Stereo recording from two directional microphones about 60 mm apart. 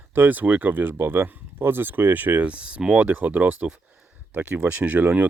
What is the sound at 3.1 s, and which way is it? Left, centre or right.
Speech, right.